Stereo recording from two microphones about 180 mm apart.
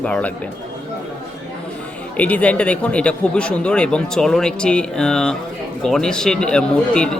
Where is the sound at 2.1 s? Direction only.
10° left (ahead or behind).